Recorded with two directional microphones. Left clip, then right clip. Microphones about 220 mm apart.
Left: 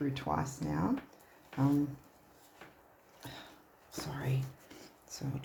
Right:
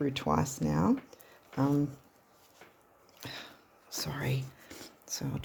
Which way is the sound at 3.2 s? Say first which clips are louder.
Right 5 dB; 40° right (ahead or behind).